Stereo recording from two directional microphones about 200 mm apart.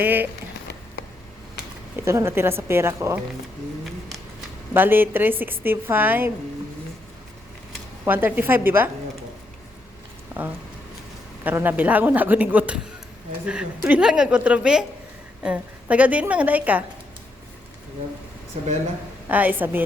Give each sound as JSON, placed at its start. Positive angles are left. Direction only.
{"t": 0.0, "sound": "speech", "side_deg": -10}
{"t": 2.0, "sound": "speech", "side_deg": -15}
{"t": 4.7, "sound": "speech", "side_deg": -10}
{"t": 8.0, "sound": "speech", "side_deg": -10}
{"t": 10.3, "sound": "a woman's voice", "side_deg": -10}
{"t": 19.3, "sound": "speech", "side_deg": -10}